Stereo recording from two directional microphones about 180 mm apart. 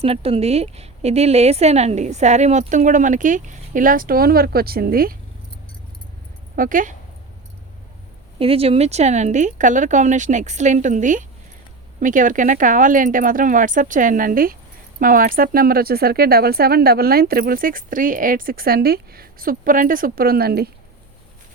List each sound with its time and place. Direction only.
0.0 s a woman's voice: 30° right (ahead or behind); by 5.1 s 55° right (ahead or behind)
6.6 s speech: 45° right (ahead or behind)
8.4 s a woman's voice: 30° right (ahead or behind); by 20.7 s 60° right (ahead or behind)